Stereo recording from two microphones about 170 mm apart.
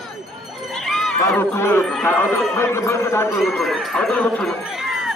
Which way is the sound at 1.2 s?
15° left (ahead or behind).